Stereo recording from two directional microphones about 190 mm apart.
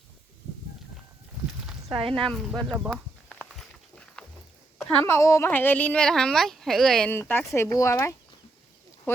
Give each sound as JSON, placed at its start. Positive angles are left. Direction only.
{"t": 1.9, "sound": "speech", "side_deg": -25}
{"t": 2.6, "sound": "speech", "side_deg": -5}
{"t": 3.2, "sound": "walk", "side_deg": 5}
{"t": 4.8, "sound": "speech", "side_deg": 15}